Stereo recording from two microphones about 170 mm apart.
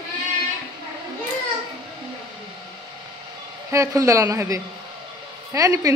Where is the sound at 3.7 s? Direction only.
20° right (ahead or behind).